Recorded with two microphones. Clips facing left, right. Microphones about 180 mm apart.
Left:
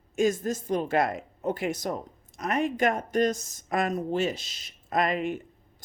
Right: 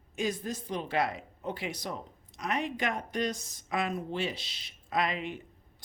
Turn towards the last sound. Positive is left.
turn(degrees=45)  # may be behind; listen again after turning